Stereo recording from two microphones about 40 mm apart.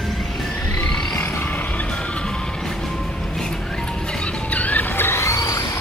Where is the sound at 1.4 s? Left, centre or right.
Left.